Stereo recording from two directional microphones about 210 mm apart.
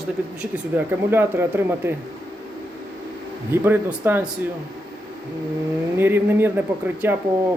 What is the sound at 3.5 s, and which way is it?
Speech, 10° right (ahead or behind).